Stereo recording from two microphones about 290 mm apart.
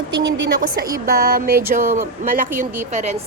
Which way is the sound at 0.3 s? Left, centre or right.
Right.